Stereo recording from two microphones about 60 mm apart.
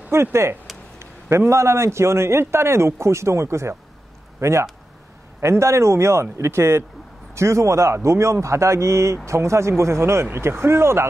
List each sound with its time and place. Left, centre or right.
0.1 s a man's voice: right